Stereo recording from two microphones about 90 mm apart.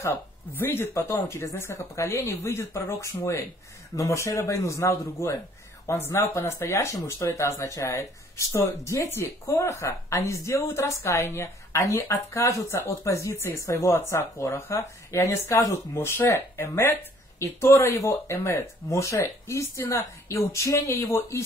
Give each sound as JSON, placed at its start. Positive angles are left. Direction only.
{"t": 0.0, "sound": "speech", "side_deg": 25}